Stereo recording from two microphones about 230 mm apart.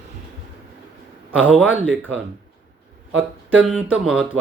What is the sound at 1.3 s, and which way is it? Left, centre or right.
Speech, centre.